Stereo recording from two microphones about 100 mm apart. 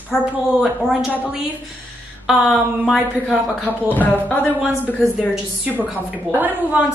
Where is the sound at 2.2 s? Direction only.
Centre (ahead or behind).